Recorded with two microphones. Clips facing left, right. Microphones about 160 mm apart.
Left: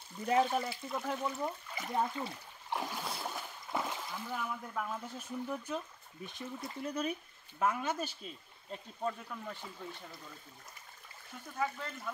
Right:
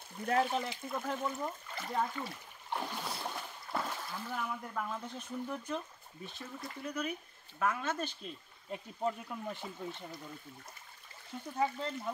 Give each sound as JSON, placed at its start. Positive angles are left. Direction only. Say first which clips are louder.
{"t": 0.4, "sound": "speech", "louder": "left 2 dB", "side_deg": 10}
{"t": 1.4, "sound": "speech", "louder": "left 1 dB", "side_deg": 15}
{"t": 2.7, "sound": "boat", "louder": "even", "side_deg": 5}
{"t": 3.7, "sound": "splash", "louder": "left 1 dB", "side_deg": 15}
{"t": 4.4, "sound": "speech", "louder": "right 2 dB", "side_deg": 5}
{"t": 6.2, "sound": "speech", "louder": "left 2 dB", "side_deg": 15}
{"t": 6.8, "sound": "speech", "louder": "left 2 dB", "side_deg": 30}
{"t": 7.5, "sound": "speech", "louder": "left 1 dB", "side_deg": 20}
{"t": 8.2, "sound": "speech", "louder": "right 2 dB", "side_deg": 0}
{"t": 8.7, "sound": "speech", "louder": "right 2 dB", "side_deg": -20}
{"t": 11.5, "sound": "speech", "louder": "right 3 dB", "side_deg": -25}